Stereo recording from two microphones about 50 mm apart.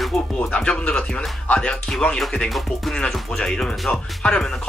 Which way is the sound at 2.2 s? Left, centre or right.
Centre.